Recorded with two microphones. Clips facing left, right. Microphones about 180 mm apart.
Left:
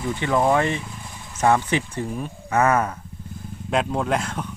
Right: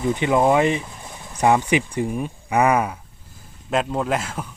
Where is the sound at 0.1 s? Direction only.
15° right (ahead or behind).